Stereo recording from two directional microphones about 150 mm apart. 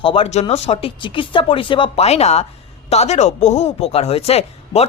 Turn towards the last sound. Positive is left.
turn(degrees=45)  # may be behind; listen again after turning